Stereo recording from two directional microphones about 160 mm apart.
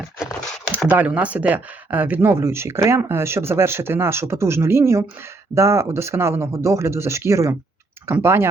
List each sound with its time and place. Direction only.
0.9 s speech: 10° right (ahead or behind)